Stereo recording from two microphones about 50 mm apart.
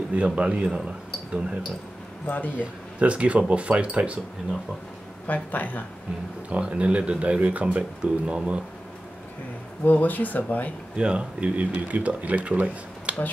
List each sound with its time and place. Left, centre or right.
0.1 s speech: right
2.2 s speech: left
2.6 s speech: right
5.2 s speech: left
6.5 s speech: right
9.8 s speech: left
11.0 s speech: right